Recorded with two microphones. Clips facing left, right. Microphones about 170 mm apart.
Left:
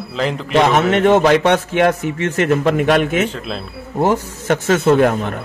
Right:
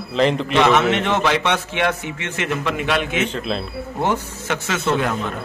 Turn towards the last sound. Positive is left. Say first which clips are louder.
# left 8 dB
turn(degrees=50)  # may be behind; listen again after turning